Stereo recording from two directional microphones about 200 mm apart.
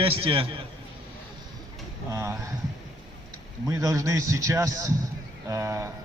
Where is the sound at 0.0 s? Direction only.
30° right (ahead or behind).